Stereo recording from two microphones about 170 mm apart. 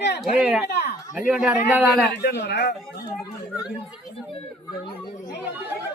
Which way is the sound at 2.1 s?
80° left.